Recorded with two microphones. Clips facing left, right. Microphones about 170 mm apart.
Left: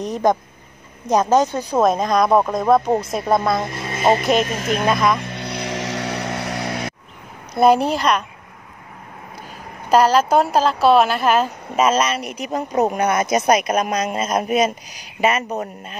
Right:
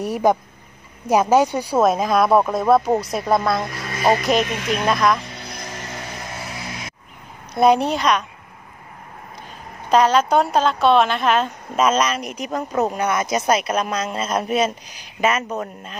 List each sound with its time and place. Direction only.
0.0 s a woman's voice: 5° right (ahead or behind)
3.6 s speech: 25° left (ahead or behind)
4.2 s a woman's voice: centre (ahead or behind)
4.5 s speech: 40° left (ahead or behind)
4.8 s a woman's voice: centre (ahead or behind)
5.3 s music: 70° left (ahead or behind)
7.5 s a woman's voice: centre (ahead or behind)
9.8 s a woman's voice: 5° left (ahead or behind)
12.9 s speech: 50° left (ahead or behind)
13.3 s speech: 15° left (ahead or behind)